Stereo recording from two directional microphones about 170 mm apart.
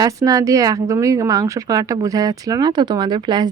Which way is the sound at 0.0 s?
20° right (ahead or behind).